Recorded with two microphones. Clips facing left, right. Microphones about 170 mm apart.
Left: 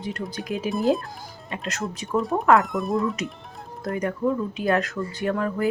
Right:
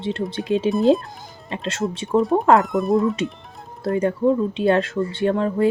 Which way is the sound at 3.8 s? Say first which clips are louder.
Right 6 dB; 30° right (ahead or behind).